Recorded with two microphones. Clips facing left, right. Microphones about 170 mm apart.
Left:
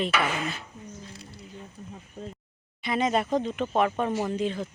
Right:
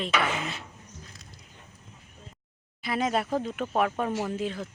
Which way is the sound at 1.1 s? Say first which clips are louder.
Left 7 dB; 30° left (ahead or behind).